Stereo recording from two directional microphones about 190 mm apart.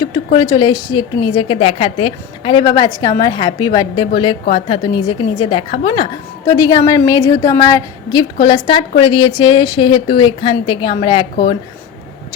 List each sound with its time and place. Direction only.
0.3 s a woman's voice: 20° left (ahead or behind)